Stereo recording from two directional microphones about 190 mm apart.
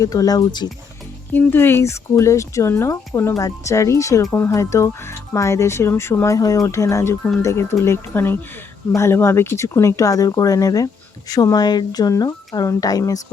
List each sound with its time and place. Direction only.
0.0 s speech: 20° left (ahead or behind)
1.3 s speech: 10° left (ahead or behind)